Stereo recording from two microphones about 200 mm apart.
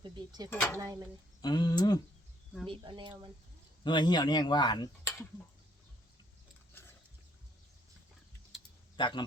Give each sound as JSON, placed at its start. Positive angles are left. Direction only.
{"t": 0.0, "sound": "speech", "side_deg": -20}
{"t": 0.5, "sound": "speech", "side_deg": 10}
{"t": 1.4, "sound": "speech", "side_deg": 20}
{"t": 2.6, "sound": "speech", "side_deg": -25}
{"t": 3.8, "sound": "speech", "side_deg": 20}
{"t": 9.0, "sound": "a man's voice", "side_deg": 20}